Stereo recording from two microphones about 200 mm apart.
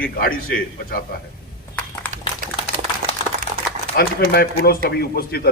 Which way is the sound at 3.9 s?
50° left (ahead or behind).